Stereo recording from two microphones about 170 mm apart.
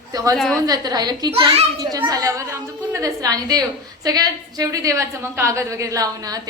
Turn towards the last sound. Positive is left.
turn(degrees=-20)  # may be behind; listen again after turning